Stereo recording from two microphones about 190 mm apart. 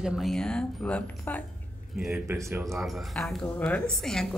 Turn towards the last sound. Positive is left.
turn(degrees=5)  # may be behind; listen again after turning